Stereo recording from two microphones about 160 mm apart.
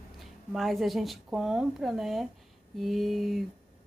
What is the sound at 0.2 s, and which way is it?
A woman's voice, centre (ahead or behind).